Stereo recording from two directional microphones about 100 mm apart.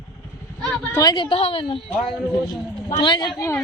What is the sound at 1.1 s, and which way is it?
Speech, 60° left (ahead or behind).